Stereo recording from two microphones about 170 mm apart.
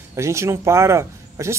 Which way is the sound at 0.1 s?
15° right (ahead or behind).